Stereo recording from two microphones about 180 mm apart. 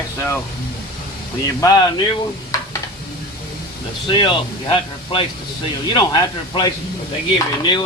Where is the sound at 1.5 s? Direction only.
20° left (ahead or behind).